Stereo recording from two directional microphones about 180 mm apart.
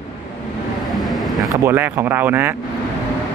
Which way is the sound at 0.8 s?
Centre (ahead or behind).